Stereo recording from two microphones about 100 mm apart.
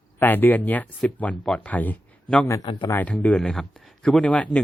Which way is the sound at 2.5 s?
35° left (ahead or behind).